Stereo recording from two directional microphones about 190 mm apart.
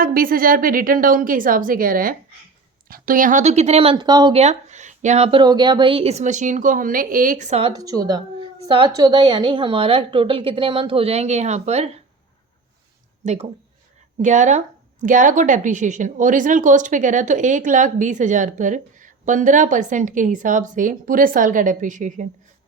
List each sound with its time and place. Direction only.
0.0 s a woman's voice: 50° right (ahead or behind); by 4.4 s 20° right (ahead or behind)
4.4 s speech: 35° right (ahead or behind)
7.7 s a woman's voice: 20° right (ahead or behind); by 11.9 s 35° right (ahead or behind)
13.2 s speech: 35° right (ahead or behind)